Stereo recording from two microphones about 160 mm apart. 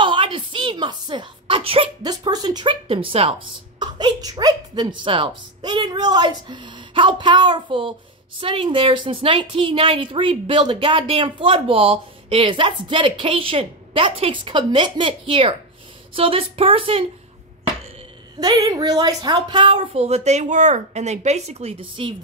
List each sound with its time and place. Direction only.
0.0 s a sound: 30° right (ahead or behind)
3.8 s a woman's voice: 25° right (ahead or behind)
18.4 s a woman's voice: 25° right (ahead or behind)